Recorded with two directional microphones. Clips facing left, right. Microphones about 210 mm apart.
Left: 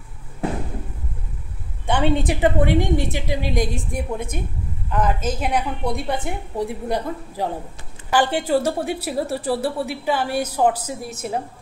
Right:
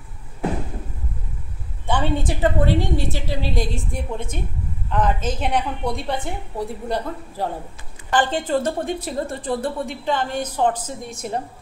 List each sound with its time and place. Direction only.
1.9 s a woman's voice: 15° left (ahead or behind)